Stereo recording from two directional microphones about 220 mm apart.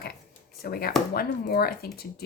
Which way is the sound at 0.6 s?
45° left (ahead or behind).